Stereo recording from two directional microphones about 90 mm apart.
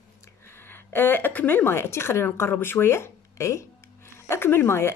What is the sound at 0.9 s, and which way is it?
A woman's voice, 20° left (ahead or behind).